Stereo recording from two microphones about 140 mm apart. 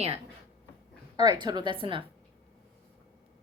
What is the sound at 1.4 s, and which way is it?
Speech, 30° right (ahead or behind).